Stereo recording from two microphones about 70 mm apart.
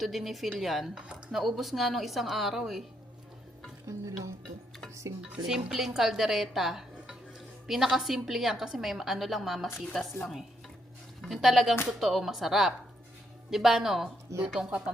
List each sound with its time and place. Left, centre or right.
0.0 s speech: centre
3.8 s stir: right
5.5 s speech: centre
14.6 s speech: centre